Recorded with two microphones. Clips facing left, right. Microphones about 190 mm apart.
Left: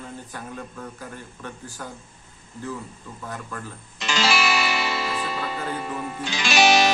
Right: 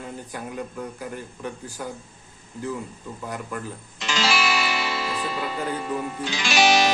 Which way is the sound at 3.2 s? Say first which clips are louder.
Right 2 dB; 15° right (ahead or behind).